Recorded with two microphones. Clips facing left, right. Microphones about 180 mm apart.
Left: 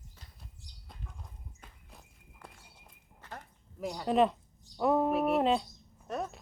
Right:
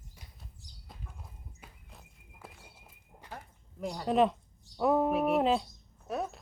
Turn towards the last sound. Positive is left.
turn(degrees=0)  # may be behind; listen again after turning